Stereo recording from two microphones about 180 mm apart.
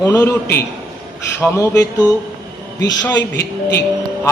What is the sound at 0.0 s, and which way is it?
Speech, 10° left (ahead or behind).